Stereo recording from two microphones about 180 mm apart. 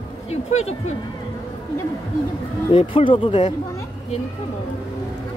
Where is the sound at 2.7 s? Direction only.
30° left (ahead or behind).